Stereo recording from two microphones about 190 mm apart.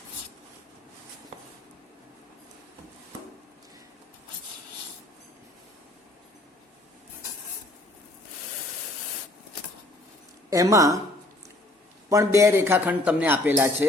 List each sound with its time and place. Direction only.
10.5 s speech: 15° right (ahead or behind)
12.0 s speech: 15° right (ahead or behind)